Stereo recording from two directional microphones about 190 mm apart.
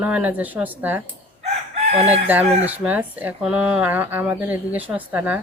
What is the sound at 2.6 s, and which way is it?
Speech, 10° right (ahead or behind).